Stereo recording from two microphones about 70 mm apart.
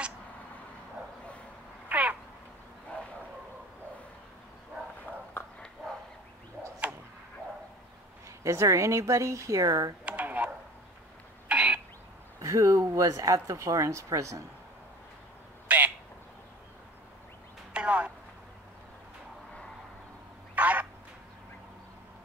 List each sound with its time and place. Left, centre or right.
1.9 s crow: right
8.5 s speech: right
10.0 s a sound: right
11.4 s cough: centre
12.4 s speech: right
15.7 s quack: right
17.7 s a sound: centre
20.5 s duck: right